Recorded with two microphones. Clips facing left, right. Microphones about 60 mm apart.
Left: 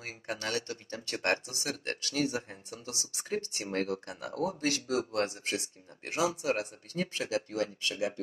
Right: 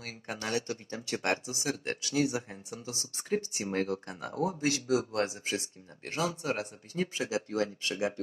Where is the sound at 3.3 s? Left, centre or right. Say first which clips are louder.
Right 3 dB; left.